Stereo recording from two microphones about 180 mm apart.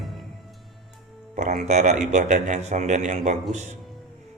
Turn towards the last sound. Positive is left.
turn(degrees=-40)  # may be behind; listen again after turning